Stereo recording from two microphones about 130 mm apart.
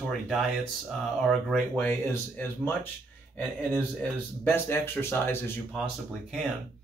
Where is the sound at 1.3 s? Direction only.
5° left (ahead or behind).